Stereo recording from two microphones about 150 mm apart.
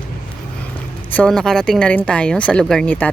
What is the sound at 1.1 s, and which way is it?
A woman's voice, 5° left (ahead or behind).